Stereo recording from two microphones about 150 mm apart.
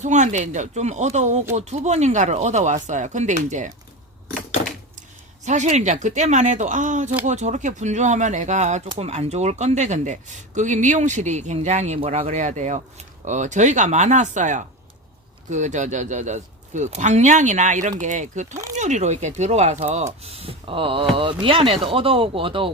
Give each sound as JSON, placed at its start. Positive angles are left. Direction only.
{"t": 0.0, "sound": "speech", "side_deg": -50}
{"t": 5.5, "sound": "speech", "side_deg": -50}